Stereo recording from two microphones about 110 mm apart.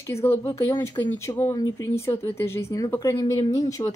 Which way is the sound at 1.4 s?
40° left (ahead or behind).